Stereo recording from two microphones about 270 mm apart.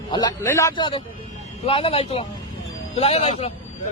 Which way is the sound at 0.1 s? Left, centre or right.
Centre.